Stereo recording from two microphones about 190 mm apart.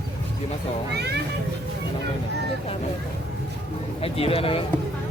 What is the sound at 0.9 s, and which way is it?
Speech, 60° right (ahead or behind).